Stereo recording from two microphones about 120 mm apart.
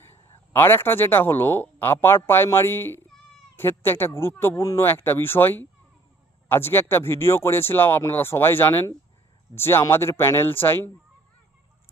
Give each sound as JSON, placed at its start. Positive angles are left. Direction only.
{"t": 0.0, "sound": "a man's voice", "side_deg": 20}